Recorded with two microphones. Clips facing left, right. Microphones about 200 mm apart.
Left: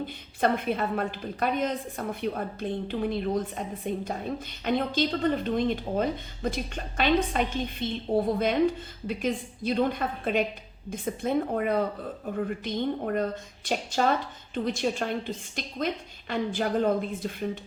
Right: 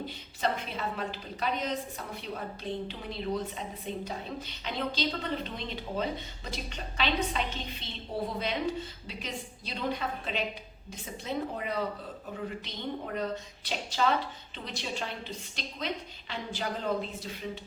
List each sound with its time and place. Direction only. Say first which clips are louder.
0.0 s speech: left 5 dB; 55° left (ahead or behind)